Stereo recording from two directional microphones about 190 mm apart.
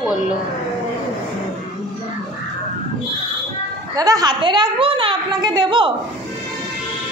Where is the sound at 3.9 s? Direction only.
20° right (ahead or behind).